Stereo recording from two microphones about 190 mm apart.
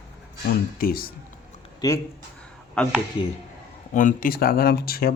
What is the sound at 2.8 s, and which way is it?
Speech, 5° left (ahead or behind).